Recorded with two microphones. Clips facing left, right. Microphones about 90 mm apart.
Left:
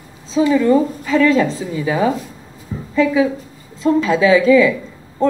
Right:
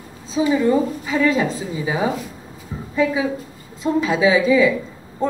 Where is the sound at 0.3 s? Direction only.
15° right (ahead or behind).